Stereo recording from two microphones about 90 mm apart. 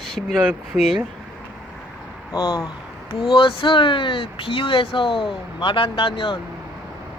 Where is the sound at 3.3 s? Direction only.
85° left.